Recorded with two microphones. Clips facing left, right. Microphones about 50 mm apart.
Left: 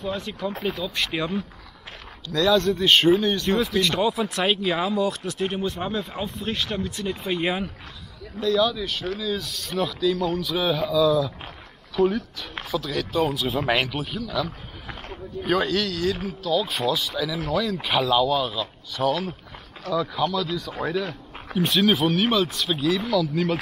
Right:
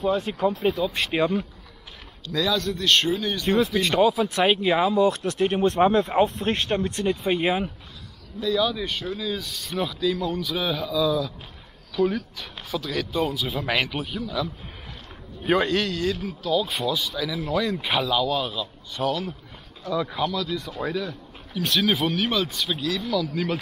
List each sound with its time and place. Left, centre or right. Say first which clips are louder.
0.0 s a man's voice: right 6 dB; centre
2.3 s a man's voice: left 5 dB; centre
4.4 s a man's voice: right 4 dB; centre
5.0 s speech: right 4 dB; right
7.3 s speech: right 2 dB; centre
15.4 s a man's voice: right 1 dB; centre
19.9 s a man's voice: left 1 dB; centre